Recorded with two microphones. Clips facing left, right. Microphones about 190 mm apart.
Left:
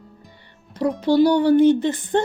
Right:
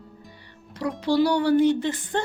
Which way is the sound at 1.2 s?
20° left (ahead or behind).